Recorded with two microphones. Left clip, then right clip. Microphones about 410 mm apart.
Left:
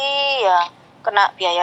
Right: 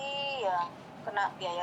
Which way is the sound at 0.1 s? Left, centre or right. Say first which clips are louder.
Left 15 dB; left.